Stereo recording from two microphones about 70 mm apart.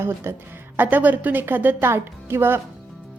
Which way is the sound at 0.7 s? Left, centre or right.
Right.